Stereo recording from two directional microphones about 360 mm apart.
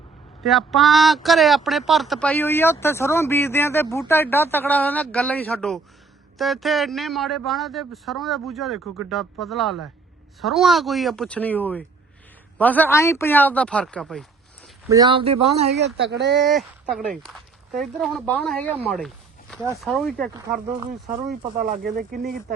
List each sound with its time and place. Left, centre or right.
0.4 s a man's voice: centre
14.8 s speech: centre
15.8 s speech: right
16.5 s a man's voice: centre
21.6 s speech: right